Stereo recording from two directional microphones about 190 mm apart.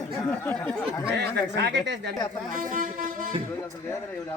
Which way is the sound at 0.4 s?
10° left (ahead or behind).